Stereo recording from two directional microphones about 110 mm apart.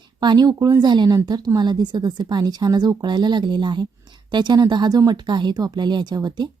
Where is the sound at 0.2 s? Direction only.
40° right (ahead or behind).